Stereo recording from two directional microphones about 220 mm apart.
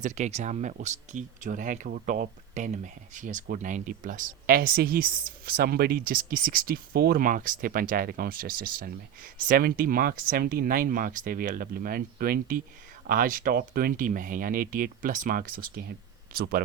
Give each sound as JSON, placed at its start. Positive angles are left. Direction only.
{"t": 0.0, "sound": "speech", "side_deg": -30}